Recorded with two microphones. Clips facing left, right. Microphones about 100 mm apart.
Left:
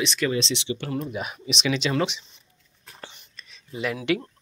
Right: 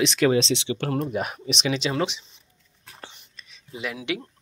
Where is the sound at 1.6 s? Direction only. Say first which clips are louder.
Left 1 dB; 30° right (ahead or behind).